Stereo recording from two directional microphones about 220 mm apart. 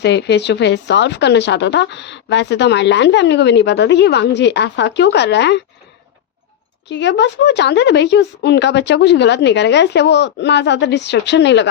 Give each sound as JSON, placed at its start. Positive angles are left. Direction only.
{"t": 0.0, "sound": "speech", "side_deg": 50}
{"t": 6.8, "sound": "speech", "side_deg": 55}